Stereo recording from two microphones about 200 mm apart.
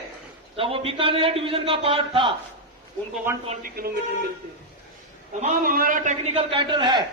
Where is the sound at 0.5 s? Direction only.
30° right (ahead or behind).